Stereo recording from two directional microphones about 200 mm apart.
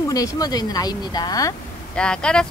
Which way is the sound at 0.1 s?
20° left (ahead or behind).